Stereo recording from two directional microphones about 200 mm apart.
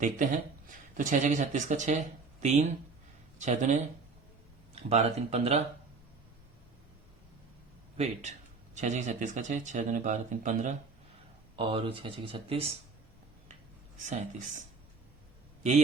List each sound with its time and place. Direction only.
0.7 s speech: 40° right (ahead or behind)
7.9 s speech: 35° right (ahead or behind)
14.0 s speech: 35° right (ahead or behind)